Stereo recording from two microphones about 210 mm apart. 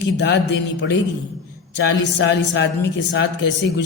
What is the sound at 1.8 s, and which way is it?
Speech, 55° left (ahead or behind).